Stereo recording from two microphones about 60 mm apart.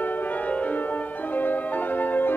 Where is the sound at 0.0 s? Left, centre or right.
Left.